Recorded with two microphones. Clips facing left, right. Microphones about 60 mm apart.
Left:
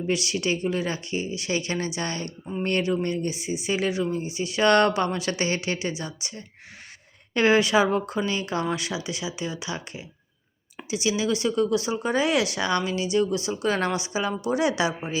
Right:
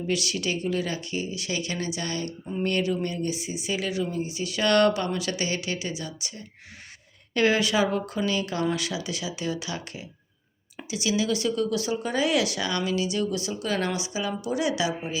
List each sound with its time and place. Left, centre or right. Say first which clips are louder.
0.1 s speech: left 2 dB; left